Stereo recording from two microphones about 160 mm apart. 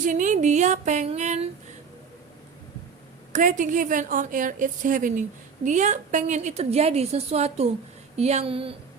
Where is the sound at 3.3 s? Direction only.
55° right (ahead or behind).